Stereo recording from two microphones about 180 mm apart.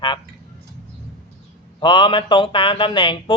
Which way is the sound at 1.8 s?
25° left (ahead or behind).